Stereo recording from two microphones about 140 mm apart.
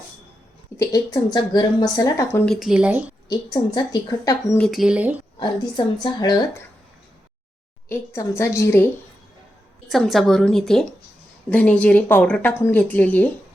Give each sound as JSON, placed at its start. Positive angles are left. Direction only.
{"t": 0.8, "sound": "a woman's voice", "side_deg": 25}
{"t": 2.5, "sound": "a woman's voice", "side_deg": -5}
{"t": 3.2, "sound": "a woman's voice", "side_deg": 30}
{"t": 4.5, "sound": "a woman's voice", "side_deg": 0}
{"t": 5.4, "sound": "a woman's voice", "side_deg": 30}
{"t": 7.9, "sound": "a woman's voice", "side_deg": 20}
{"t": 9.9, "sound": "a woman's voice", "side_deg": 0}